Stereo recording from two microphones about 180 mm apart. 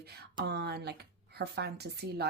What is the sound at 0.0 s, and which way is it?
Speech, 60° right (ahead or behind).